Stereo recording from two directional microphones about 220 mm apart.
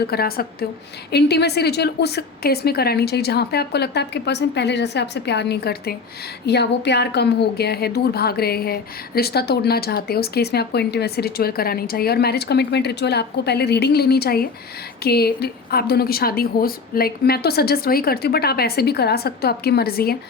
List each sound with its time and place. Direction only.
0.1 s a woman's voice: 45° left (ahead or behind)